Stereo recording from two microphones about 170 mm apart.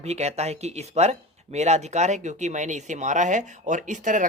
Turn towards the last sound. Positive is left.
turn(degrees=-50)  # may be behind; listen again after turning